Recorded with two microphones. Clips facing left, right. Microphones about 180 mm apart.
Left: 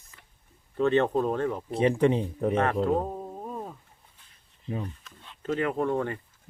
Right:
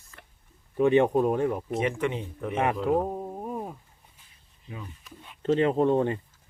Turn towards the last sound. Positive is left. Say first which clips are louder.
# right 5 dB
turn(degrees=-20)  # may be behind; listen again after turning